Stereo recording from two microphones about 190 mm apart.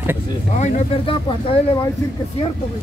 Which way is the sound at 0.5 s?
40° left (ahead or behind).